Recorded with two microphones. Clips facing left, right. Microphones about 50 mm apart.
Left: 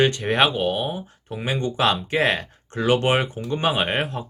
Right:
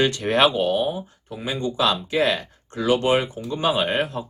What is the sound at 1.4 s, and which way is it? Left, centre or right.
Speech, left.